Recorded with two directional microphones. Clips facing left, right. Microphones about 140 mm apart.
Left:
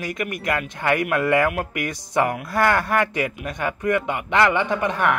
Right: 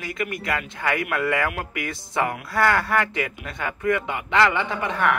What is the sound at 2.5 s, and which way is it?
Speech, 20° left (ahead or behind).